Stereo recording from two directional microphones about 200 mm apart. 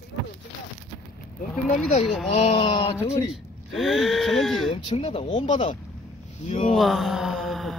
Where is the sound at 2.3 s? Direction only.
30° left (ahead or behind).